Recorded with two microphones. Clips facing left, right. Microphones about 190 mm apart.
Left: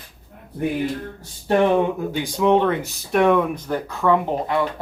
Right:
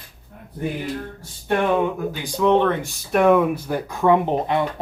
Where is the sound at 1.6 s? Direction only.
20° left (ahead or behind).